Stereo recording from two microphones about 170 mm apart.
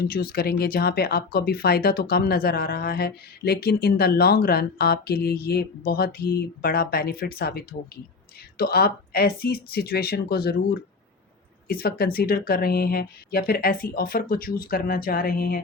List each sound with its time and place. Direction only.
0.0 s speech: 65° left (ahead or behind)
11.7 s speech: 65° left (ahead or behind)